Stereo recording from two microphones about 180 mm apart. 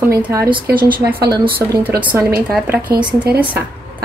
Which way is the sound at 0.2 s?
15° right (ahead or behind).